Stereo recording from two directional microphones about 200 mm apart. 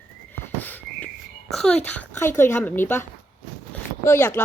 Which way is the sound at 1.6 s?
5° left (ahead or behind).